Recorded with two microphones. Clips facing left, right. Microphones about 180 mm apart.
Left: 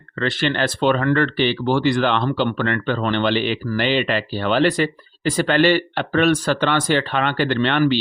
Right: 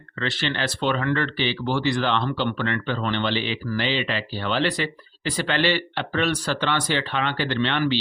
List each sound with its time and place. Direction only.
0.2 s speech: 50° left (ahead or behind)